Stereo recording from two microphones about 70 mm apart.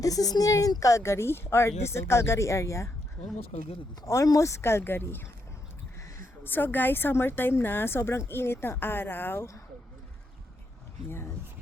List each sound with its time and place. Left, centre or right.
0.0 s a woman's voice: left
4.0 s a woman's voice: left
6.4 s a woman's voice: left